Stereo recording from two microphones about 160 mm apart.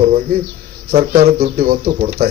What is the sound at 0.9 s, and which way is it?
Speech, 65° right (ahead or behind).